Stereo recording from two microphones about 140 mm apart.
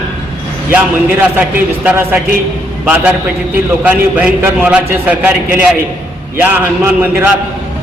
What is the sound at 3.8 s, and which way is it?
A man's voice, 10° right (ahead or behind).